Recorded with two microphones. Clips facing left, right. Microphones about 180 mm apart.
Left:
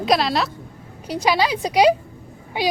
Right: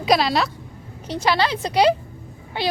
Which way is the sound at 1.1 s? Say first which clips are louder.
Left 1 dB; 10° left (ahead or behind).